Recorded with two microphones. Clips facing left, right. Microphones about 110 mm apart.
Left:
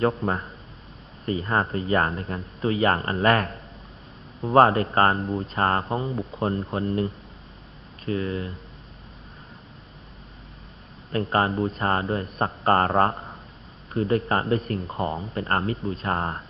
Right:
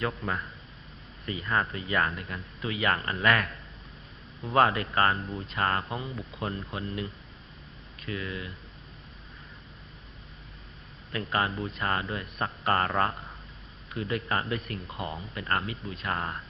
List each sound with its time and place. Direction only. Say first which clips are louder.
0.0 s speech: left 8 dB; 35° left (ahead or behind)
11.1 s speech: left 6 dB; 35° left (ahead or behind)